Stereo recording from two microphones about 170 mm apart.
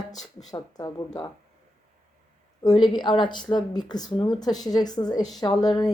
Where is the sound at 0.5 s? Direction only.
25° left (ahead or behind).